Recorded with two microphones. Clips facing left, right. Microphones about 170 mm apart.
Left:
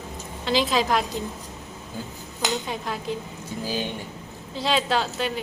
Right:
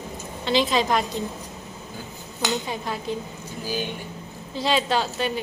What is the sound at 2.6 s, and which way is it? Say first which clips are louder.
Speech: right 1 dB; centre (ahead or behind).